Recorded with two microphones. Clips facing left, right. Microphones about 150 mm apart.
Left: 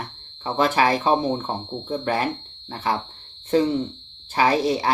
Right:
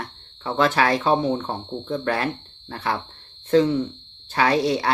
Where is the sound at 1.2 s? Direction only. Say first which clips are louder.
Right 1 dB; 20° left (ahead or behind).